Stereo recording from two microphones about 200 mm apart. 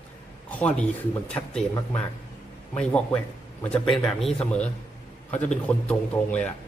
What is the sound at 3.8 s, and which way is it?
Speech, 25° left (ahead or behind).